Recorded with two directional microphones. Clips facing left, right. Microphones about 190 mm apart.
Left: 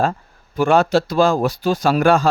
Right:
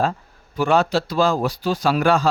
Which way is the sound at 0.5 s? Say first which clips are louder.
Left 3 dB; 50° left (ahead or behind).